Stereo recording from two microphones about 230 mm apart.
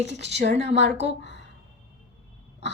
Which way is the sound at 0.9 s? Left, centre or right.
Right.